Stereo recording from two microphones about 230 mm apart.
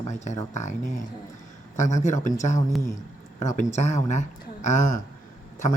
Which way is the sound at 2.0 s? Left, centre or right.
Left.